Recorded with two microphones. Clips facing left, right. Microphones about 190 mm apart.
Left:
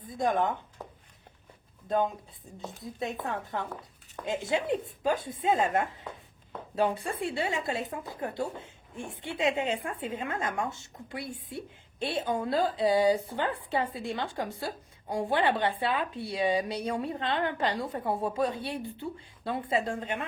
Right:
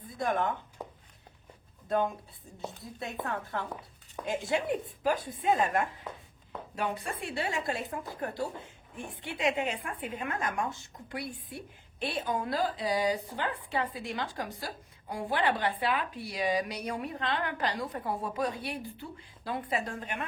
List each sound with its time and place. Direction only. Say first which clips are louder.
0.2 s a woman's voice: left 3 dB; 20° left (ahead or behind)
0.8 s a sound: right 2 dB; 10° right (ahead or behind)
3.2 s a woman's voice: left 1 dB; 20° left (ahead or behind)